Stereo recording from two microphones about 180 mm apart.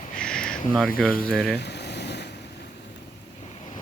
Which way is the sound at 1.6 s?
70° left (ahead or behind).